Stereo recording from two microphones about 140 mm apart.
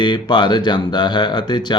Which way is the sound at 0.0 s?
30° left (ahead or behind).